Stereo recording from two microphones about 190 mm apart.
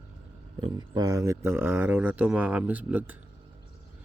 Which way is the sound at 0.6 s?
20° right (ahead or behind).